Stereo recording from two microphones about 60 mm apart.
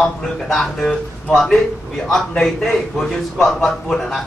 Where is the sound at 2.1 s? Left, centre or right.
Centre.